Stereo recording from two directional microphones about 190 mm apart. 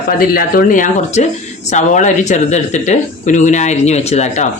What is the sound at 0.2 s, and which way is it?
Speech, 50° left (ahead or behind).